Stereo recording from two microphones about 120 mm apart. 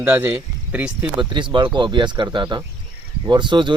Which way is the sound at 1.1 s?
40° right (ahead or behind).